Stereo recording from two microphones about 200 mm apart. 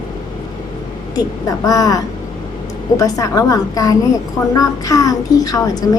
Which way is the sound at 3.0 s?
15° left (ahead or behind).